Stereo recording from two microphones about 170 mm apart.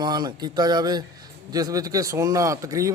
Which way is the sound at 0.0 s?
25° right (ahead or behind).